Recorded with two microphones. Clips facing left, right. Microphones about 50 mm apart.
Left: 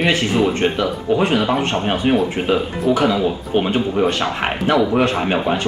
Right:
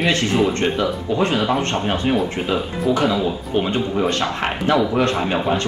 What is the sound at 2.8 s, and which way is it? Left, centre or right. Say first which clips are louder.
Speech: left 2 dB; left.